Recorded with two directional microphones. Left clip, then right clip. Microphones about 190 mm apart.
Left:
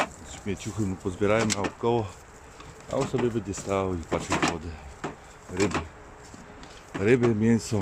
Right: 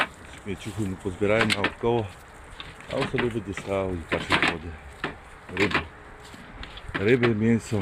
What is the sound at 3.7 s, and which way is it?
Speech, 15° left (ahead or behind).